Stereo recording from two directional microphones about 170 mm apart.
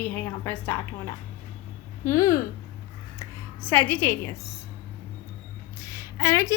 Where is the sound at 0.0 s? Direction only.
10° left (ahead or behind).